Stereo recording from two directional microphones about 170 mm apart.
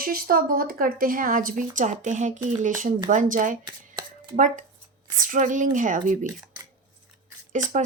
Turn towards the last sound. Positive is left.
turn(degrees=-45)  # may be behind; listen again after turning